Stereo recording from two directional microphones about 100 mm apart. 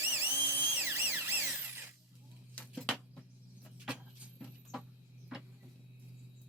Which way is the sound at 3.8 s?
10° right (ahead or behind).